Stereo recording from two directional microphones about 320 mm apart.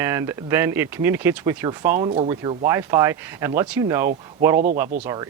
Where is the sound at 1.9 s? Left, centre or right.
Centre.